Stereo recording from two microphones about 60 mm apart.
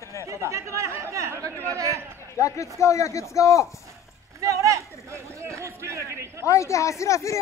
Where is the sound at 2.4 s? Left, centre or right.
Left.